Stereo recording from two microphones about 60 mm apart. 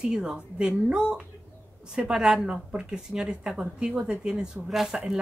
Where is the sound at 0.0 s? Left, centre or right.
Centre.